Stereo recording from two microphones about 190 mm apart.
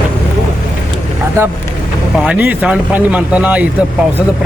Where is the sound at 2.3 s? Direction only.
10° right (ahead or behind).